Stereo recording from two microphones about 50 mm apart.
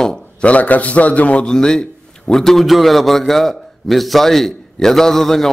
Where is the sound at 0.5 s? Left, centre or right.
Left.